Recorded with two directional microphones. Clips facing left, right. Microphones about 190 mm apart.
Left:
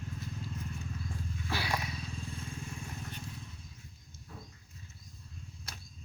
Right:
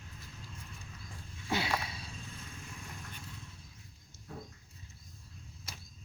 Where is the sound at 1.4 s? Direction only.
20° right (ahead or behind).